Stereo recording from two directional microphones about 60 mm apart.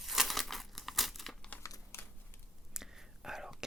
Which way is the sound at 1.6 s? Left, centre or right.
Left.